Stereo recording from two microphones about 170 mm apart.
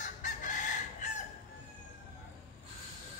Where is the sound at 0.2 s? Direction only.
45° left (ahead or behind).